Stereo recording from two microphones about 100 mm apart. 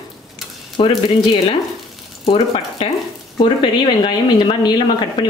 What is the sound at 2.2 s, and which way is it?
Speech, 70° left (ahead or behind).